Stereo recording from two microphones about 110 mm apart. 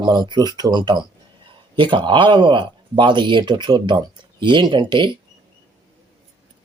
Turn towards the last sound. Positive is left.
turn(degrees=-45)  # may be behind; listen again after turning